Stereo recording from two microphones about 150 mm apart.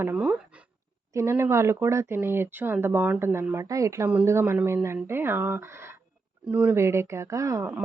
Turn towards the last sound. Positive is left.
turn(degrees=-20)  # may be behind; listen again after turning